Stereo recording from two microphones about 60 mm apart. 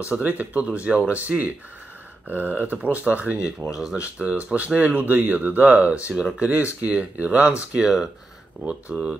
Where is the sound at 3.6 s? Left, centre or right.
Right.